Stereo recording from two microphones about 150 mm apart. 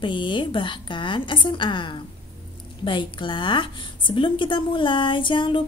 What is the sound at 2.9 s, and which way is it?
Speech, 30° left (ahead or behind).